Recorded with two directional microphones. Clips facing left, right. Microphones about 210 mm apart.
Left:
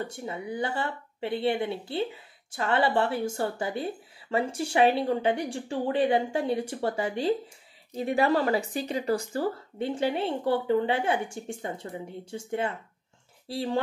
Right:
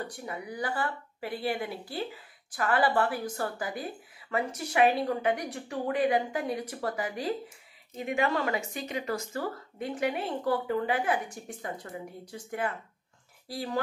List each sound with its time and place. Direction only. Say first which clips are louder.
0.0 s speech: left 3 dB; 25° left (ahead or behind)